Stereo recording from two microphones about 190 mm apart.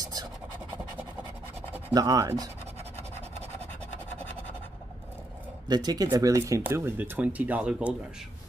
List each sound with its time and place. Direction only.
0.0 s scratch: 20° right (ahead or behind)
2.0 s speech: 20° right (ahead or behind)
2.8 s scratch: 35° right (ahead or behind)
5.7 s speech: 20° right (ahead or behind)